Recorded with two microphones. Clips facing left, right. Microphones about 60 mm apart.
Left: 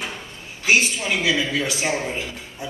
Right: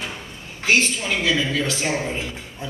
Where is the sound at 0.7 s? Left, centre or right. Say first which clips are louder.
Even; centre.